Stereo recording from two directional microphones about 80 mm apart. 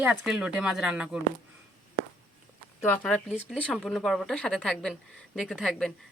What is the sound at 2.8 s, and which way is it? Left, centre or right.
Speech, left.